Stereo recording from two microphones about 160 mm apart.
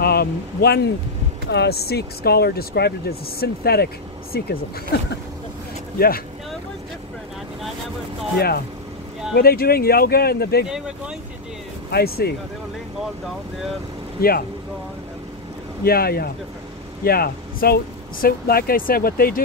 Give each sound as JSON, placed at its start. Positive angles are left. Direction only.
{"t": 0.0, "sound": "speech", "side_deg": 75}
{"t": 5.9, "sound": "speech", "side_deg": 70}
{"t": 8.4, "sound": "speech", "side_deg": 75}
{"t": 11.9, "sound": "speech", "side_deg": 85}
{"t": 15.8, "sound": "speech", "side_deg": 70}